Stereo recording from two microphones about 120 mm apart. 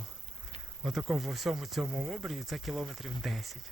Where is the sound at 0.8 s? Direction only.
Centre (ahead or behind).